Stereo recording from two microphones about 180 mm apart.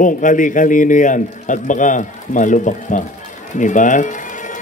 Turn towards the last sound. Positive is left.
turn(degrees=45)  # may be behind; listen again after turning